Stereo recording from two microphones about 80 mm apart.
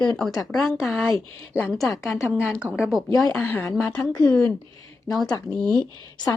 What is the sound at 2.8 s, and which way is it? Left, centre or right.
Speech, centre.